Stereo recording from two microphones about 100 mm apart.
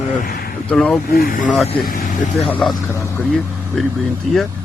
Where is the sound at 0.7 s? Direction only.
10° left (ahead or behind).